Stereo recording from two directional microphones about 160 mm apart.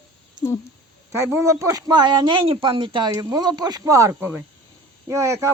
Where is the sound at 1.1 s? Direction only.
15° right (ahead or behind).